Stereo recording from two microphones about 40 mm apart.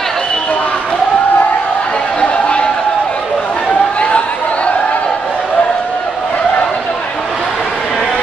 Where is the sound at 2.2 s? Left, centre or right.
Left.